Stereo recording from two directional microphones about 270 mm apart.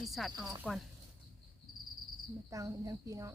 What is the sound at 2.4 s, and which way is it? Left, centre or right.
Speech, centre.